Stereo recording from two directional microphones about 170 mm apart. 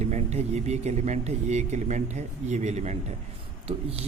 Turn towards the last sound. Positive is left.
turn(degrees=-35)  # may be behind; listen again after turning